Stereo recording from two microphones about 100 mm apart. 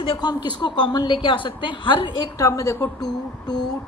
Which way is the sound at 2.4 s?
30° left (ahead or behind).